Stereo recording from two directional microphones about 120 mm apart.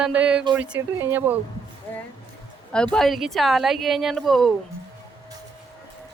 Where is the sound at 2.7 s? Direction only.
5° left (ahead or behind).